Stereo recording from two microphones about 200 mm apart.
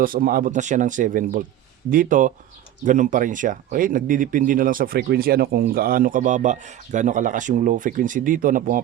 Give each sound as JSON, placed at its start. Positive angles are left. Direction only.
{"t": 0.0, "sound": "speech", "side_deg": -45}